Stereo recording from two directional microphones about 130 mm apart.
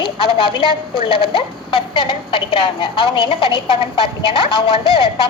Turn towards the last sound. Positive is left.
turn(degrees=45)  # may be behind; listen again after turning